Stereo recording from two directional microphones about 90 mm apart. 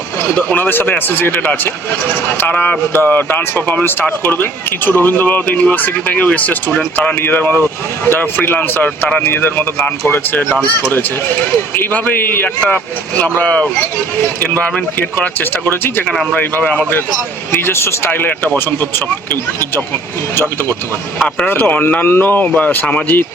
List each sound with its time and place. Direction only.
0.3 s speech: 15° left (ahead or behind)